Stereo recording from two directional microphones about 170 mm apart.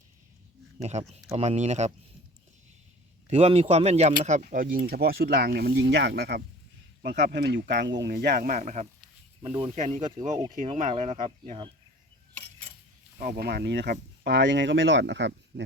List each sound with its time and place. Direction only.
0.8 s speech: 40° right (ahead or behind)
3.2 s speech: 35° right (ahead or behind); by 8.5 s 65° right (ahead or behind)
8.5 s speech: 45° right (ahead or behind)
13.1 s speech: 60° right (ahead or behind); by 15.6 s 90° right